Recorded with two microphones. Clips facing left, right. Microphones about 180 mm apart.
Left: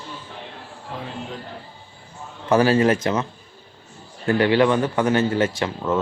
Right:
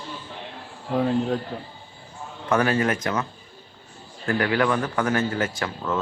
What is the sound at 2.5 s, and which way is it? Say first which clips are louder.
Speech: left 5 dB; 30° left (ahead or behind).